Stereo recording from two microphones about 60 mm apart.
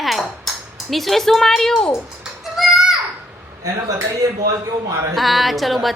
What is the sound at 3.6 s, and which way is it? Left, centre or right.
A man's voice, right.